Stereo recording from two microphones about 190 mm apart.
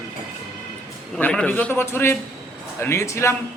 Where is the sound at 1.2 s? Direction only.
10° left (ahead or behind).